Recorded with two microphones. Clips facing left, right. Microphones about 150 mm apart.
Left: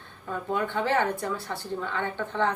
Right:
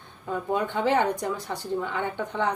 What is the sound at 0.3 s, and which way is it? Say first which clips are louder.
Speech: right 2 dB; 15° right (ahead or behind).